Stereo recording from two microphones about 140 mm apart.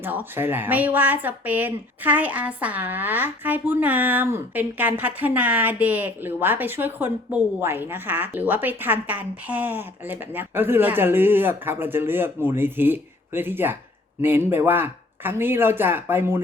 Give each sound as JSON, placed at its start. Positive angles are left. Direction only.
{"t": 0.0, "sound": "speech", "side_deg": -15}